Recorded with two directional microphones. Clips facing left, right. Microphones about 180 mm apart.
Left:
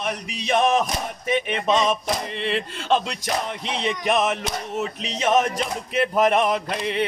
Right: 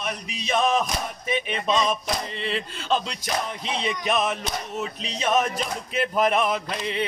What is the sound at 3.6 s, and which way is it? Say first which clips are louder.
Music: left 2 dB; 70° left (ahead or behind).